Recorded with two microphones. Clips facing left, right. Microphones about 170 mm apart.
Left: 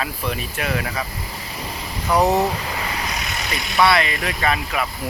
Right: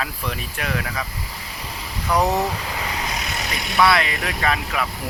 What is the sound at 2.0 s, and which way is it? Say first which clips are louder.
Speech: left 3 dB; 20° left (ahead or behind).